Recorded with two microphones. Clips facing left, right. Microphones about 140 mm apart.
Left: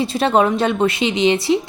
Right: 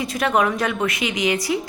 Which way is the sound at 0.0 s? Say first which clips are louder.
Left 4 dB; 30° left (ahead or behind).